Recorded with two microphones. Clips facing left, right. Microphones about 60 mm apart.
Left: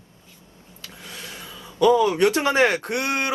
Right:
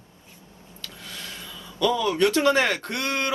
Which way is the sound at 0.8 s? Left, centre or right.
Left.